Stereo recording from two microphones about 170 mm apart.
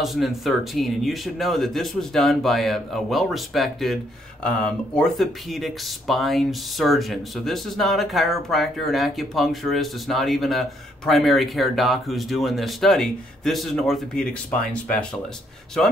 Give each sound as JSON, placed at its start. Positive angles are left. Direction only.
{"t": 0.0, "sound": "speech", "side_deg": 0}